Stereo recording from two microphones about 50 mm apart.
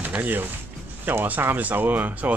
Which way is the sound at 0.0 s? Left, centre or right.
Right.